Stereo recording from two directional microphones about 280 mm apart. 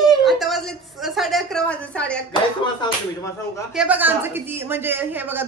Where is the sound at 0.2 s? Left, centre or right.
Centre.